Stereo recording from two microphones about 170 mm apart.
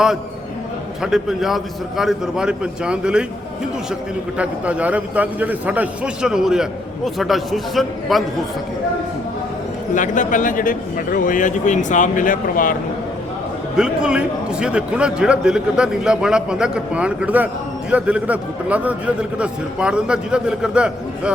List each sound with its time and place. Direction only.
1.0 s a man's voice: centre (ahead or behind)
4.4 s a man's voice: 10° right (ahead or behind)
9.9 s a man's voice: 50° left (ahead or behind)
13.7 s a man's voice: 5° right (ahead or behind)